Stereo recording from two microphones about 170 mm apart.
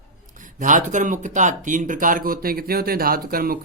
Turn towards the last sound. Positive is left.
turn(degrees=-60)  # may be behind; listen again after turning